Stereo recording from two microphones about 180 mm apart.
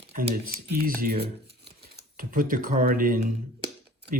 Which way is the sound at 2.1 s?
50° right (ahead or behind).